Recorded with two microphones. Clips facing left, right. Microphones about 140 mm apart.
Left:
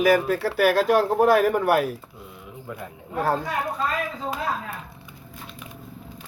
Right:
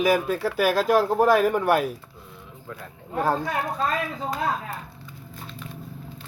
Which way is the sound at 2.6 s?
15° left (ahead or behind).